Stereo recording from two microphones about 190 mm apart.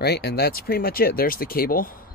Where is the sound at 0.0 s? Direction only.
60° left (ahead or behind).